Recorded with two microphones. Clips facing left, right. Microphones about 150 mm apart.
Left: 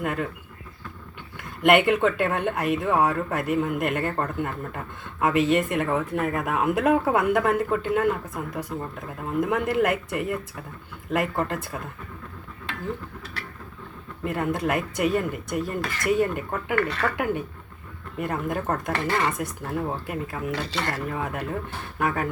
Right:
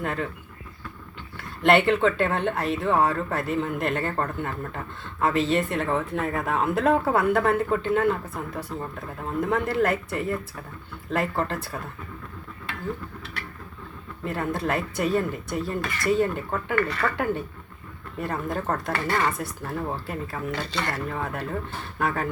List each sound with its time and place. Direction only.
0.0 s speech: 10° left (ahead or behind)
1.4 s speech: 15° left (ahead or behind)
14.3 s speech: 15° left (ahead or behind)